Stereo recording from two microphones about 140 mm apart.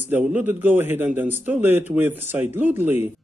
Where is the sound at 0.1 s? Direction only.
15° right (ahead or behind).